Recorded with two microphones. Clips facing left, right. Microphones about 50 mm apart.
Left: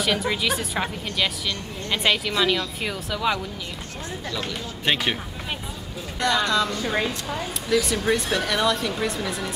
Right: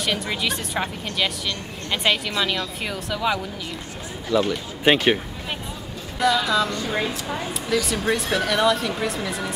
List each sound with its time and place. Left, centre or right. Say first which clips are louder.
0.0 s speech: left 1 dB; centre
4.3 s speech: right 11 dB; centre
6.1 s speech: right 2 dB; centre